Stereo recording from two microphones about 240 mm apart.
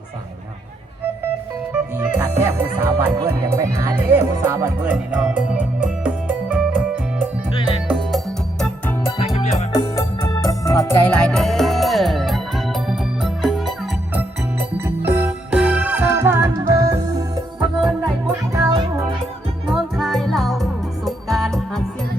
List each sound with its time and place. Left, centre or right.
2.0 s music: centre
9.0 s music: left; by 17.7 s centre
17.7 s music: centre
19.6 s music: centre